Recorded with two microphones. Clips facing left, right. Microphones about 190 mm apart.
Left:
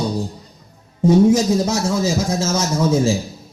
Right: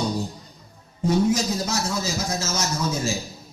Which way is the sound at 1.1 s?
25° left (ahead or behind).